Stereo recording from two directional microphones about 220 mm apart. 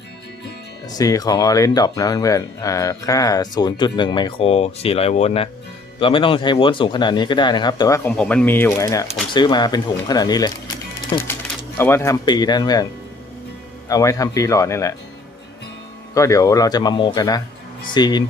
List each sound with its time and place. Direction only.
0.9 s speech: 15° left (ahead or behind)
16.1 s speech: 15° left (ahead or behind)